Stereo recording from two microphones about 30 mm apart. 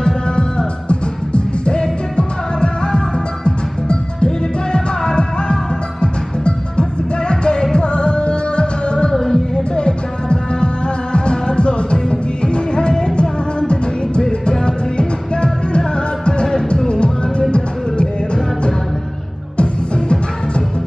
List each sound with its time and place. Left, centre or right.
0.0 s music: left
9.1 s music: centre
9.8 s music: left
19.5 s music: left